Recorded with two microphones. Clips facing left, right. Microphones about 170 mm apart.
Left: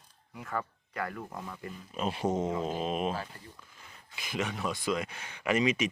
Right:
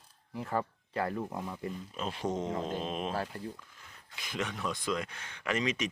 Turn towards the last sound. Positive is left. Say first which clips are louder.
# left 4 dB
turn(degrees=10)  # may be behind; listen again after turning